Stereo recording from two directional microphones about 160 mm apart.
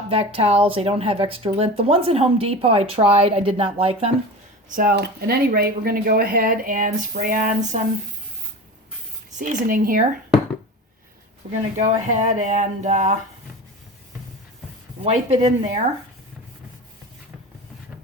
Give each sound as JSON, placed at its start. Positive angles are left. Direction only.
{"t": 0.1, "sound": "speech", "side_deg": -35}
{"t": 4.7, "sound": "speech", "side_deg": -60}
{"t": 9.4, "sound": "speech", "side_deg": -55}
{"t": 11.4, "sound": "speech", "side_deg": -40}
{"t": 15.0, "sound": "speech", "side_deg": -45}